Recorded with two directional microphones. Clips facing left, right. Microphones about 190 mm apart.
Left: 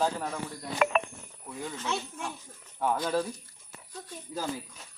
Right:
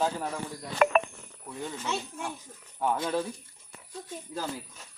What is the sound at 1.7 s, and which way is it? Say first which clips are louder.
Speech: left 1 dB; 10° right (ahead or behind).